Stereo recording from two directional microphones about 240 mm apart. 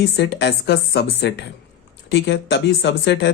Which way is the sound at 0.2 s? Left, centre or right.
Left.